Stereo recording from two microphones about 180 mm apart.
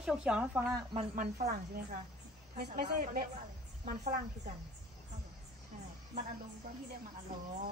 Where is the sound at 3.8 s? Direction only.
45° right (ahead or behind).